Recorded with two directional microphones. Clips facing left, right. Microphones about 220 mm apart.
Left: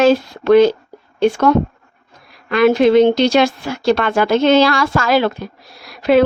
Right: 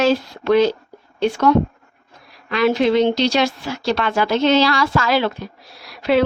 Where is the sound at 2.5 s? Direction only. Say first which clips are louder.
Left 5 dB; 50° left (ahead or behind).